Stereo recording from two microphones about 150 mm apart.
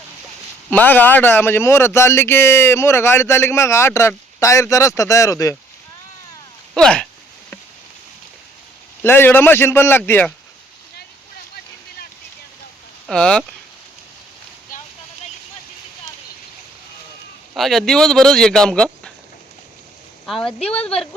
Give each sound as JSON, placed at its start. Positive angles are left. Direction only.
{"t": 0.7, "sound": "speech", "side_deg": 10}
{"t": 6.7, "sound": "speech", "side_deg": 5}
{"t": 9.0, "sound": "speech", "side_deg": 15}
{"t": 13.1, "sound": "speech", "side_deg": 5}
{"t": 17.5, "sound": "speech", "side_deg": 0}
{"t": 20.2, "sound": "speech", "side_deg": 5}